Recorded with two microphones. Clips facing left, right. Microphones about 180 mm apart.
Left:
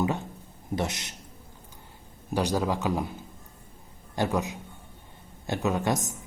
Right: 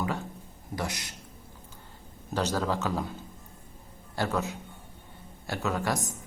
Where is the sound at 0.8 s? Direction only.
25° left (ahead or behind).